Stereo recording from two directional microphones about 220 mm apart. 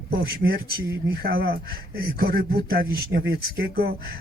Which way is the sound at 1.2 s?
45° right (ahead or behind).